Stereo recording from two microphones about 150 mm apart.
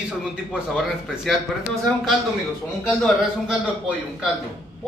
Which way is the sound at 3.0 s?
5° right (ahead or behind).